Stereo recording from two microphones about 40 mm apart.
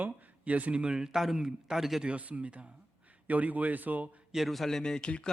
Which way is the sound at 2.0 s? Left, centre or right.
Right.